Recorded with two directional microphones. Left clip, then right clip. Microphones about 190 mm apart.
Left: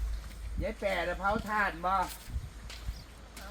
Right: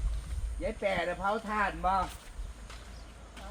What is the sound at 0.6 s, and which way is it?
Speech, 5° right (ahead or behind).